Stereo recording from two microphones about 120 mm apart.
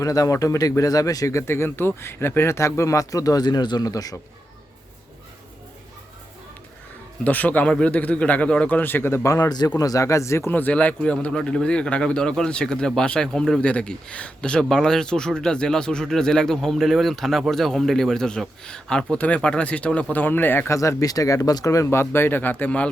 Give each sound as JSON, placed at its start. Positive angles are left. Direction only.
{"t": 0.0, "sound": "speech", "side_deg": 30}
{"t": 7.3, "sound": "a man's voice", "side_deg": 15}
{"t": 20.7, "sound": "speech", "side_deg": 30}